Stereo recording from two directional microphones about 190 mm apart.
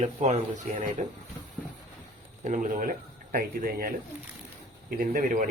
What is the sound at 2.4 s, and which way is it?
Speech, 40° right (ahead or behind).